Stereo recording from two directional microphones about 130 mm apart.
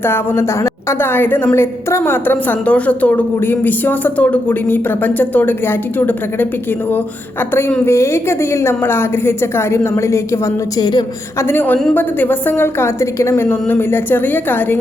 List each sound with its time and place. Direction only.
0.0 s a woman's voice: 20° left (ahead or behind)
7.5 s a woman's voice: 20° left (ahead or behind)